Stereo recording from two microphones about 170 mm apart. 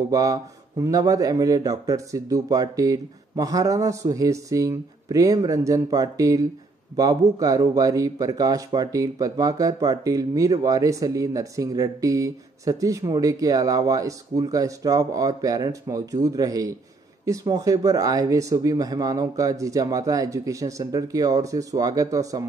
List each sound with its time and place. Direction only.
0.1 s speech: 20° right (ahead or behind)